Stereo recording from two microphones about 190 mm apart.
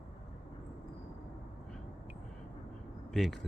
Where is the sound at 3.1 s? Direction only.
Centre (ahead or behind).